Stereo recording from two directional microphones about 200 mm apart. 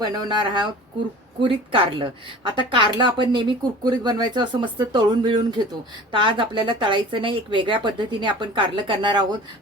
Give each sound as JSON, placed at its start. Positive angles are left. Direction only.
{"t": 0.0, "sound": "a woman's voice", "side_deg": -20}